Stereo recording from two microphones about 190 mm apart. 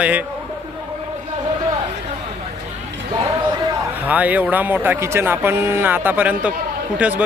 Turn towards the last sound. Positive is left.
turn(degrees=-10)  # may be behind; listen again after turning